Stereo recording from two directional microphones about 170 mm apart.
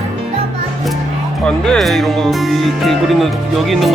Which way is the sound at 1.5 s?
5° left (ahead or behind).